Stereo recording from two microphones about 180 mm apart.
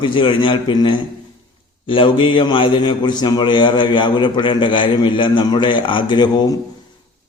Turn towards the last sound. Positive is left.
turn(degrees=25)  # may be behind; listen again after turning